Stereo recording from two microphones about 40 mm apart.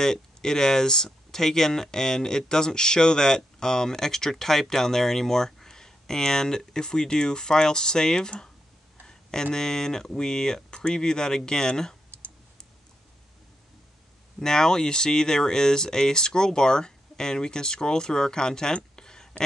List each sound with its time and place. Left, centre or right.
0.0 s speech: centre
14.4 s speech: centre
18.9 s a sound: centre